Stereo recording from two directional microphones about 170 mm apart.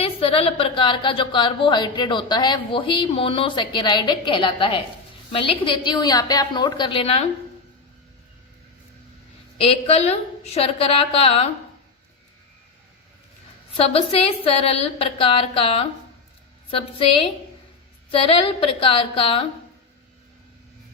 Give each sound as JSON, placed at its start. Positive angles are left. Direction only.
{"t": 0.0, "sound": "a woman's voice", "side_deg": 35}
{"t": 9.6, "sound": "a woman's voice", "side_deg": 35}
{"t": 13.7, "sound": "a woman's voice", "side_deg": 35}